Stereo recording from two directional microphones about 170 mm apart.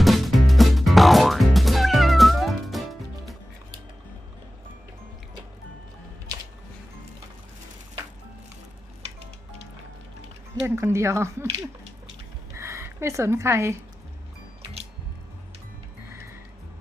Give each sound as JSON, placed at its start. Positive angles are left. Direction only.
{"t": 0.0, "sound": "music", "side_deg": 0}
{"t": 10.8, "sound": "speech", "side_deg": -15}
{"t": 12.5, "sound": "a sound", "side_deg": -15}